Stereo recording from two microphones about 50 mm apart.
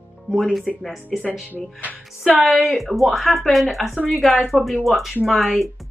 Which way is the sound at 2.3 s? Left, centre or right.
Centre.